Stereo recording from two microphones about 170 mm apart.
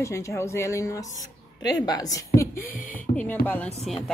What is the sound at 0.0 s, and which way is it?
A woman's voice, 15° left (ahead or behind).